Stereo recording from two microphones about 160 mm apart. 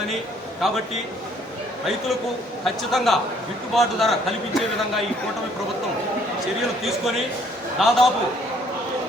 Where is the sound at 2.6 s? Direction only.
Centre (ahead or behind).